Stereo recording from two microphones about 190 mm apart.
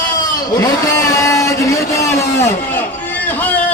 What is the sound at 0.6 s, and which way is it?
Vehicle, 15° left (ahead or behind).